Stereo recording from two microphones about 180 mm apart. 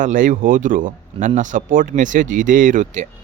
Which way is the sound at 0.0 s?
45° right (ahead or behind).